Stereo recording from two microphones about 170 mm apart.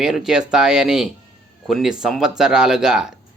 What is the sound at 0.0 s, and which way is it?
Speech, 5° right (ahead or behind).